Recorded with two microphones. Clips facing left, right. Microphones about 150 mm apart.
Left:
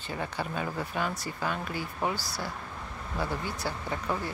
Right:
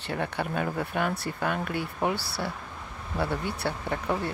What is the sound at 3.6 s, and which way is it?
Speech, 60° right (ahead or behind).